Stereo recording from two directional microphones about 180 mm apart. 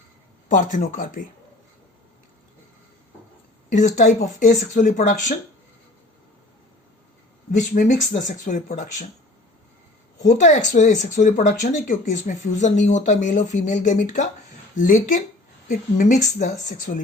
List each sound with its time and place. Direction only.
0.4 s speech: 45° left (ahead or behind)
3.7 s speech: 40° left (ahead or behind)
7.7 s speech: 40° left (ahead or behind)
10.2 s speech: 40° left (ahead or behind)